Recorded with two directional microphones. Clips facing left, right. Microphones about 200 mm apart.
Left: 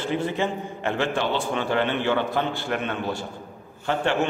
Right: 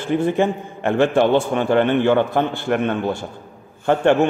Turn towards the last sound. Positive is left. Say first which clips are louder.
# right 8 dB
turn(degrees=-50)  # may be behind; listen again after turning